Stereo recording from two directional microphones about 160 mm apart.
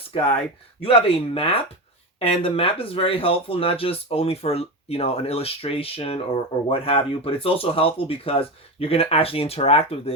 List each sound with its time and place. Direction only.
0.1 s speech: 40° left (ahead or behind)